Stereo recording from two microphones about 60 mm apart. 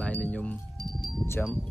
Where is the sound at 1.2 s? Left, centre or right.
Left.